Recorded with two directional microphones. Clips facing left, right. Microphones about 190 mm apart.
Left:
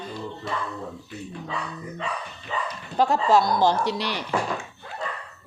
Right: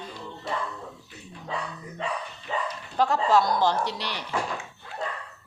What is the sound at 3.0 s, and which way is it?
Speech, 15° left (ahead or behind).